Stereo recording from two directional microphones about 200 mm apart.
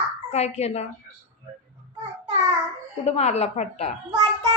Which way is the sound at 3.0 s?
35° left (ahead or behind).